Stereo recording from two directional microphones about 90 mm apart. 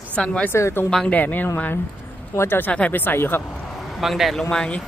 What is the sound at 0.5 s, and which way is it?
Speech, 30° left (ahead or behind).